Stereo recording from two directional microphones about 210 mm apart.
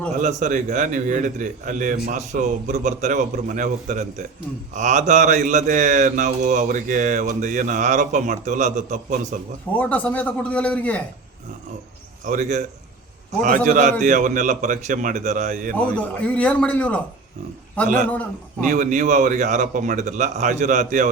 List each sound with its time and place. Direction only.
0.2 s mantra: 35° right (ahead or behind)
9.7 s a man's voice: 5° left (ahead or behind)
12.2 s mantra: 35° right (ahead or behind)
15.7 s a man's voice: 5° left (ahead or behind)
18.7 s mantra: 35° right (ahead or behind)